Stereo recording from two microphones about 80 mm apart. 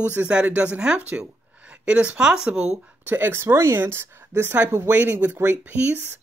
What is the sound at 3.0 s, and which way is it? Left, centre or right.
Speech, right.